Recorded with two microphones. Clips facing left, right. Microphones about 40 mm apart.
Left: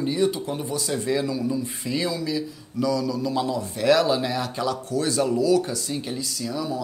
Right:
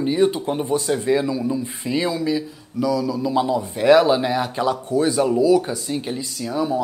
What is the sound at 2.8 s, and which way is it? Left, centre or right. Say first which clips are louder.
Speech: right 3 dB; centre.